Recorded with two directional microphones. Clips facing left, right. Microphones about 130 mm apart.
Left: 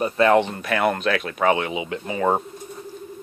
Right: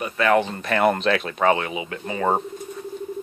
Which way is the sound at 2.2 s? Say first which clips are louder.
Left 1 dB; centre (ahead or behind).